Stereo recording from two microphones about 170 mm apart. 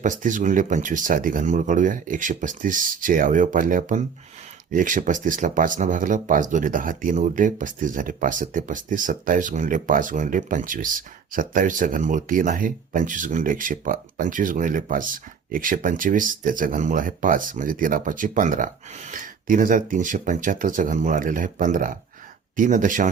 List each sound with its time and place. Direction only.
0.0 s speech: 50° right (ahead or behind)